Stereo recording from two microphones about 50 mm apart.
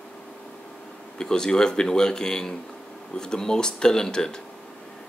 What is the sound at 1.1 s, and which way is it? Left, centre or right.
Speech, centre.